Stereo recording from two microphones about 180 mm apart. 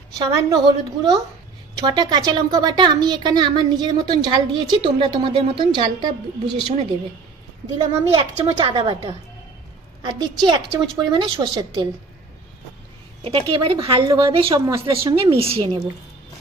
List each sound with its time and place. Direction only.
0.2 s a woman's voice: 20° right (ahead or behind)
1.8 s a woman's voice: 25° right (ahead or behind)
7.8 s a woman's voice: 25° right (ahead or behind)
13.2 s a woman's voice: 30° right (ahead or behind)
15.3 s a woman's voice: 30° right (ahead or behind)